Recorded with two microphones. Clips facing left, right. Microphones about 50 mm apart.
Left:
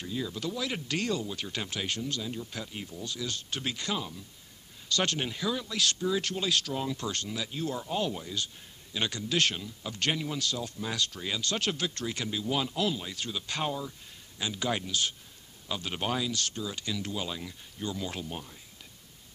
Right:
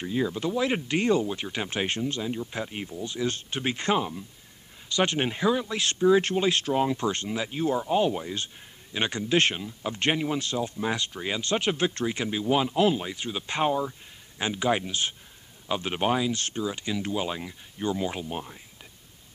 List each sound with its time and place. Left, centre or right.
0.0 s speech: right
4.8 s speech: right